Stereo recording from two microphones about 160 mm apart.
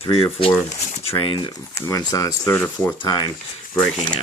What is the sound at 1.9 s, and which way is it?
Speech, 20° left (ahead or behind).